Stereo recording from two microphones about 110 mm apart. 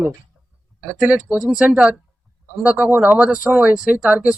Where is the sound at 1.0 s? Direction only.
10° right (ahead or behind).